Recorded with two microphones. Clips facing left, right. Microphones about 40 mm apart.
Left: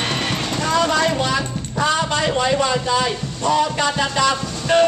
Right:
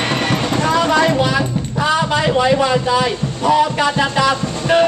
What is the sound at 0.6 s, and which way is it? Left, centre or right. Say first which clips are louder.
Speech: right 3 dB; centre.